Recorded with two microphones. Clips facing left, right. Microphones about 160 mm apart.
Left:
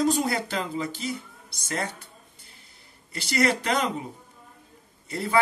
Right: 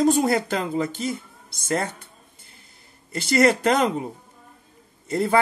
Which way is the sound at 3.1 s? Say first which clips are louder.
Right 6 dB; 50° right (ahead or behind).